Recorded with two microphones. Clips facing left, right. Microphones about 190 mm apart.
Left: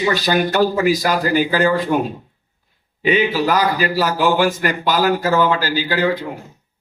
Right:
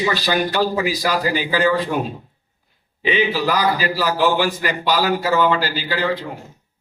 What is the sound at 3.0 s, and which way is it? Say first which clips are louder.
A man's voice: left 3 dB; 45° left (ahead or behind).